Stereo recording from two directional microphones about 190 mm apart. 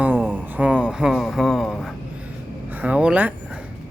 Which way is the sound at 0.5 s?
5° right (ahead or behind).